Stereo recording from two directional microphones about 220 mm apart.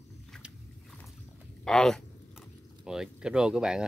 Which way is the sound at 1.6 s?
Centre (ahead or behind).